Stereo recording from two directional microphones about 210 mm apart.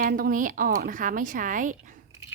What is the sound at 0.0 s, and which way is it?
Speech, 40° right (ahead or behind).